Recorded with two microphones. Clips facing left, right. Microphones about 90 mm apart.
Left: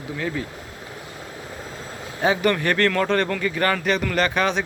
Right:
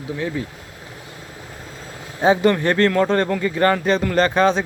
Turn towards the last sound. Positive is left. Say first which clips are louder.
# right 5 dB
turn(degrees=-30)  # may be behind; listen again after turning